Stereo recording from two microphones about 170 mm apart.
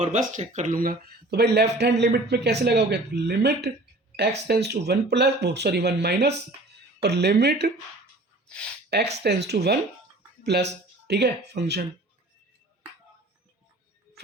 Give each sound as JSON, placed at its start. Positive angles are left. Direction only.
{"t": 0.0, "sound": "speech", "side_deg": -45}
{"t": 8.4, "sound": "speech", "side_deg": 5}
{"t": 9.2, "sound": "speech", "side_deg": -75}